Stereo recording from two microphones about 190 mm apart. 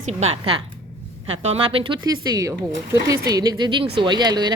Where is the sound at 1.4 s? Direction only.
30° right (ahead or behind).